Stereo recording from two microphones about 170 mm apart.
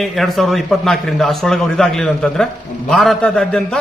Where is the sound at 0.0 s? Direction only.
Centre (ahead or behind).